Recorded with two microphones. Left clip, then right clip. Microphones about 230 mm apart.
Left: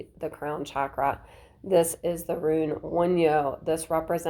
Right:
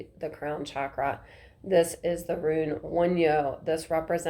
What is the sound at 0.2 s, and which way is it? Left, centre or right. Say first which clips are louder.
Speech: left 1 dB; left.